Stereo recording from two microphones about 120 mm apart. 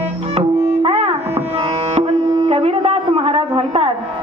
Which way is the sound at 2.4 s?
60° right (ahead or behind).